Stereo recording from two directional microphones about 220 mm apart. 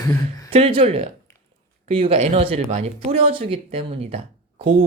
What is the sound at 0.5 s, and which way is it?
Speech, 25° right (ahead or behind).